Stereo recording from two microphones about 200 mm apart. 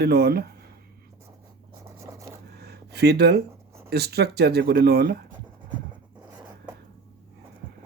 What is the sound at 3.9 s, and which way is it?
Speech, 55° right (ahead or behind).